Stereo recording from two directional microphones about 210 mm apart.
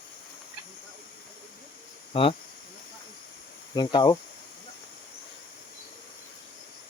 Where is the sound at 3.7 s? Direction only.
20° left (ahead or behind).